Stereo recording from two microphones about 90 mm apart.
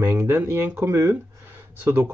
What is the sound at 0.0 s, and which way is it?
Speech, 25° right (ahead or behind).